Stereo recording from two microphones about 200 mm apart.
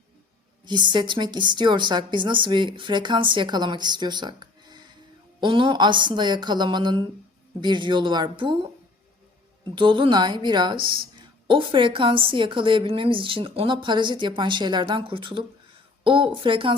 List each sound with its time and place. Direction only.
0.6 s a woman's voice: 25° right (ahead or behind)
9.7 s a woman's voice: 25° right (ahead or behind)